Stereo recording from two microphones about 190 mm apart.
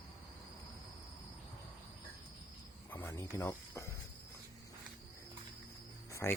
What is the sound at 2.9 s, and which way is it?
Speech, 10° left (ahead or behind).